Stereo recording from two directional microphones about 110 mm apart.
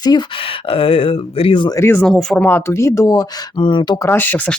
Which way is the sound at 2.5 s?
20° left (ahead or behind).